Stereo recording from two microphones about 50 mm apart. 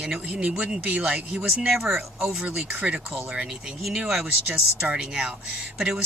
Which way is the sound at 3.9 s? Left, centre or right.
Centre.